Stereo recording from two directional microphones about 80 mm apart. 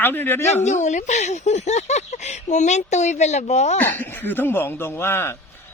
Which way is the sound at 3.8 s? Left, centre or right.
Left.